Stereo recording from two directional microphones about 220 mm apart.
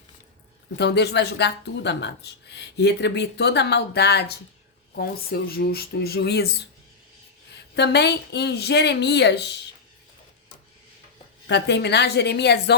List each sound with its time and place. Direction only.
0.8 s speech: 50° left (ahead or behind)
7.8 s speech: 50° left (ahead or behind)
11.4 s speech: 50° left (ahead or behind)